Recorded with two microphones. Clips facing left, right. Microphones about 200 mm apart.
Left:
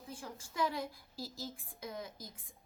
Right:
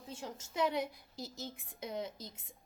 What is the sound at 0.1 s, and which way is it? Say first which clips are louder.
A woman's voice: right 3 dB; 25° right (ahead or behind).